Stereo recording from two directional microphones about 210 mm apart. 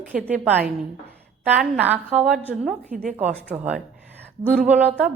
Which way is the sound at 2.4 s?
10° left (ahead or behind).